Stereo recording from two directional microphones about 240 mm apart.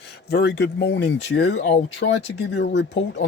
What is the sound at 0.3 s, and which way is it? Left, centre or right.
Speech, left.